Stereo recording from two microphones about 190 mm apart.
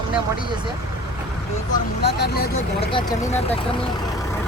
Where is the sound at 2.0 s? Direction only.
60° left (ahead or behind).